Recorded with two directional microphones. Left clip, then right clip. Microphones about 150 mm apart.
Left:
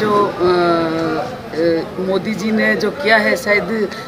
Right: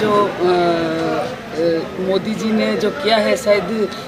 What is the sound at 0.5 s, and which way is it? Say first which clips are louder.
Speech: left 2 dB; 10° left (ahead or behind).